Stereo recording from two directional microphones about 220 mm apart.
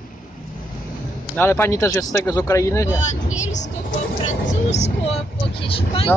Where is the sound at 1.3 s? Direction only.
10° left (ahead or behind).